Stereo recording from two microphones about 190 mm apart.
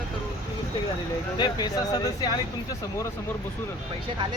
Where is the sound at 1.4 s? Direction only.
20° left (ahead or behind).